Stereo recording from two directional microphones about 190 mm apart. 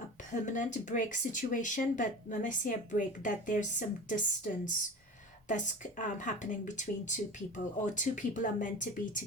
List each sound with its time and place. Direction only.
0.3 s speech: 40° left (ahead or behind)